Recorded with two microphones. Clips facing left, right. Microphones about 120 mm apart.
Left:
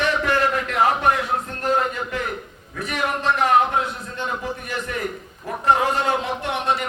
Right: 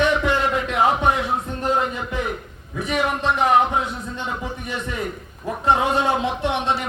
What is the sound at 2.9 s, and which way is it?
Speech, 10° right (ahead or behind).